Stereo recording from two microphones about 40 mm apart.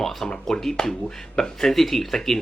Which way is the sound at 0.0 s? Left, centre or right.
Centre.